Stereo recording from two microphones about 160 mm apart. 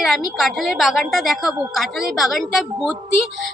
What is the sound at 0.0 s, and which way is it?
A woman's voice, centre (ahead or behind).